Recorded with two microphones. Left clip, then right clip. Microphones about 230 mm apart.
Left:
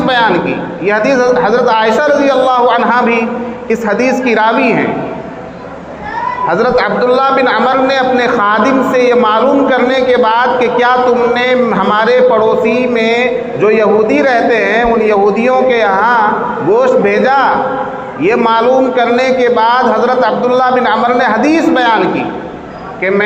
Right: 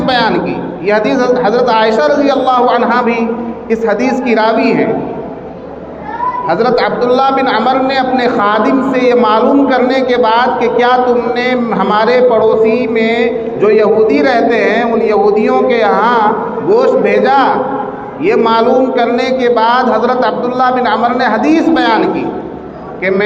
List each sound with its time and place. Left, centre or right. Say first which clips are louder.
0.0 s a man's voice: left 1 dB; left
6.5 s a man's voice: left 1 dB; left